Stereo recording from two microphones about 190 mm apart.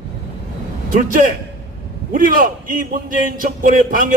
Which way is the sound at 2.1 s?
45° right (ahead or behind).